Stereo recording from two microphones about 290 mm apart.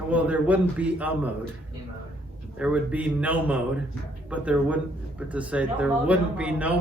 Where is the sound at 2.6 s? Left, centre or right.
Centre.